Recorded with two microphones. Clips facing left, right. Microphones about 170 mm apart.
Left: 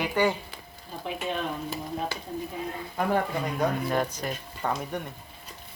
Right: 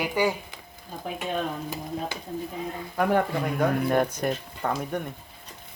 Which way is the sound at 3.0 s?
55° right (ahead or behind).